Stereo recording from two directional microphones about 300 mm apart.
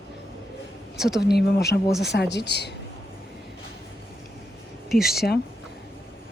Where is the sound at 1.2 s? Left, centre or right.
Left.